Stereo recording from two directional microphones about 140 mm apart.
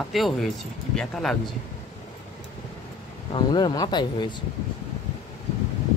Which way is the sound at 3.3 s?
30° left (ahead or behind).